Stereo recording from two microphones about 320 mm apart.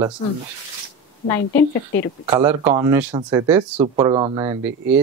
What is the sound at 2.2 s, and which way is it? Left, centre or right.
Speech, centre.